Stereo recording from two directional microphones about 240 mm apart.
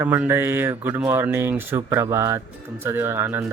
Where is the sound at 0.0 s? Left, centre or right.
Centre.